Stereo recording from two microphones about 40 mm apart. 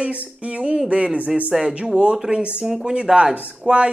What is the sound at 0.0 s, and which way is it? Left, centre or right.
Speech, right.